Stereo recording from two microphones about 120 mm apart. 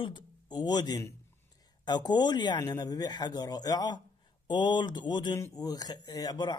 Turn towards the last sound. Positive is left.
turn(degrees=35)  # may be behind; listen again after turning